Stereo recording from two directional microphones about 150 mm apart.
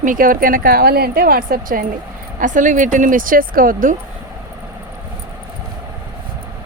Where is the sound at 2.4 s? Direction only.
60° right (ahead or behind).